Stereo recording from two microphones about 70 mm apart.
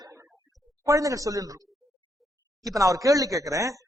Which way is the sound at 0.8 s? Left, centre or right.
Right.